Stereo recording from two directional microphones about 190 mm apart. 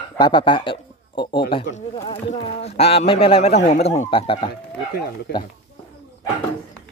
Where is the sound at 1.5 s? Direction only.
30° left (ahead or behind).